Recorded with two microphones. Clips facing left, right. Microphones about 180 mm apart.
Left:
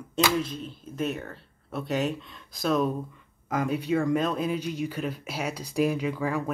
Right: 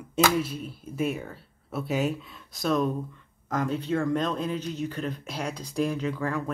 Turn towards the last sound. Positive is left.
turn(degrees=10)  # may be behind; listen again after turning